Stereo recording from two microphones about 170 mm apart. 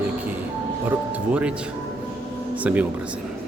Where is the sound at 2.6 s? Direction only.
10° right (ahead or behind).